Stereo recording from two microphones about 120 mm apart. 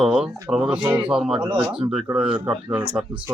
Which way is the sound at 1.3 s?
50° right (ahead or behind).